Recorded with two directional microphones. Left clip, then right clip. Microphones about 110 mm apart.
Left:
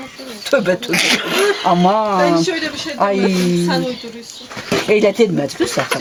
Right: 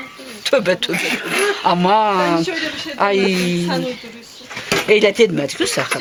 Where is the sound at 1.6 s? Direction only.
40° right (ahead or behind).